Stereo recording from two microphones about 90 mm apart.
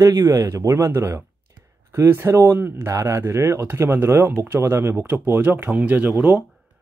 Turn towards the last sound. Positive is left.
turn(degrees=-20)  # may be behind; listen again after turning